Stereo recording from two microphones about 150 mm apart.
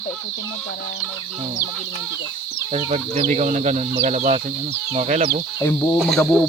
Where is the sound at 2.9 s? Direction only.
50° right (ahead or behind).